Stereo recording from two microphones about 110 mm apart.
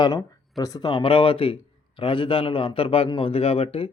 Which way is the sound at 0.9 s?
50° left (ahead or behind).